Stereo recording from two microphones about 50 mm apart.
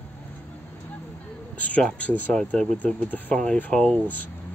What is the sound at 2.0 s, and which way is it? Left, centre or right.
Speech, left.